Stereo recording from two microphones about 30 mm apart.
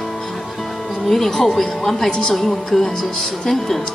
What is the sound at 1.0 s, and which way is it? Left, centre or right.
Speech, centre.